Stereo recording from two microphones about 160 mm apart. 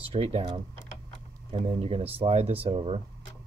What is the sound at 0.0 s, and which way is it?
Speech, 35° right (ahead or behind).